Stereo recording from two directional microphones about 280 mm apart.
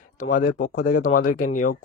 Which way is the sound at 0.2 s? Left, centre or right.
Left.